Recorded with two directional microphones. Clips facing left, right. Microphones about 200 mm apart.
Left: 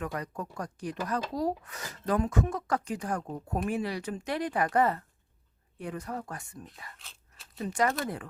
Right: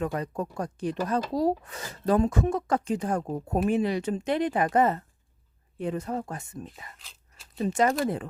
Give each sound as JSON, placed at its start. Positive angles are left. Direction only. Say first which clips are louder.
{"t": 0.0, "sound": "speech", "louder": "right 6 dB", "side_deg": -25}
{"t": 7.0, "sound": "a sound", "louder": "even", "side_deg": 0}
{"t": 7.6, "sound": "speech", "louder": "right 5 dB", "side_deg": -25}